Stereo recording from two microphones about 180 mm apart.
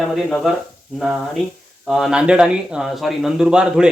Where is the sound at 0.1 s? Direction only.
Centre (ahead or behind).